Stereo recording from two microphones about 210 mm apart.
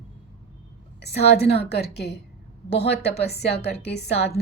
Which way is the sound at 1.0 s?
50° left (ahead or behind).